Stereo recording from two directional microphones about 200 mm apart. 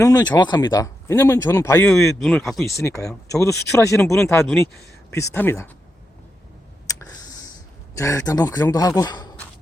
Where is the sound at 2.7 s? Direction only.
15° left (ahead or behind).